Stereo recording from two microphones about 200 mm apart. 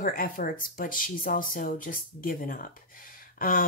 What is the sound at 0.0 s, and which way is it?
Speech, 45° left (ahead or behind).